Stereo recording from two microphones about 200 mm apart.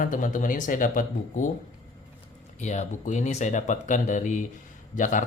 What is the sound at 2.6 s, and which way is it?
Speech, 35° left (ahead or behind).